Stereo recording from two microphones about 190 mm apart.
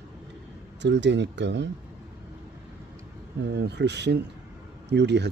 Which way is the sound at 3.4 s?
65° right (ahead or behind).